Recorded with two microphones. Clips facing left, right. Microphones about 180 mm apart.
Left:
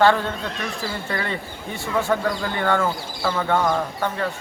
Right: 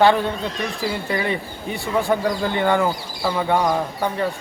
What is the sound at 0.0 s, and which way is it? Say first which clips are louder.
Speech: right 2 dB; 15° right (ahead or behind).